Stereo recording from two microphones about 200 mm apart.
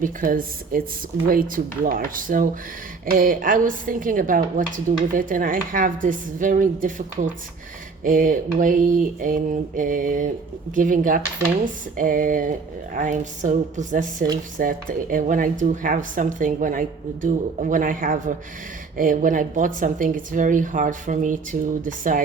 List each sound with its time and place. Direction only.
0.0 s a woman's voice: 45° right (ahead or behind)